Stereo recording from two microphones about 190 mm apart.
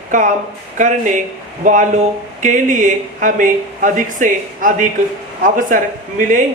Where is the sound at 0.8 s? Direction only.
40° right (ahead or behind).